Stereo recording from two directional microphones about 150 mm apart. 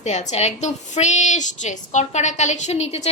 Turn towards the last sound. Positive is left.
turn(degrees=45)  # may be behind; listen again after turning